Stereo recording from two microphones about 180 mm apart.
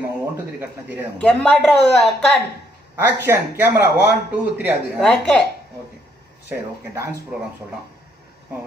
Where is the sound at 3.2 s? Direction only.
15° right (ahead or behind).